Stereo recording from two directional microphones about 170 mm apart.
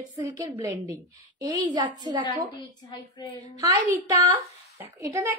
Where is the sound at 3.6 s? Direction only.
20° right (ahead or behind).